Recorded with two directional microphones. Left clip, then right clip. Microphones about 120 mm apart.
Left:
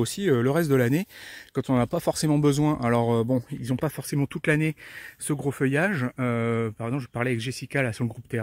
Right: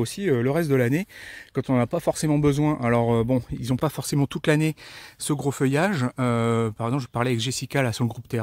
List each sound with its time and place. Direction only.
0.0 s speech: 15° left (ahead or behind); by 3.4 s 10° right (ahead or behind)
3.6 s speech: 25° right (ahead or behind)
4.0 s speech: 45° right (ahead or behind)